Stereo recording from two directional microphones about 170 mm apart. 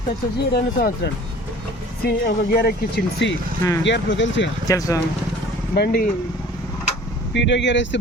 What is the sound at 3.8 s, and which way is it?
Speech, 90° left.